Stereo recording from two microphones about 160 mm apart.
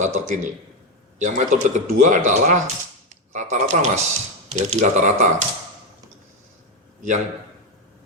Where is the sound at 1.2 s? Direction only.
50° right (ahead or behind).